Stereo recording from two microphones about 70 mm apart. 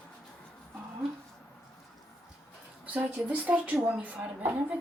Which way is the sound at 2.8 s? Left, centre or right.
Right.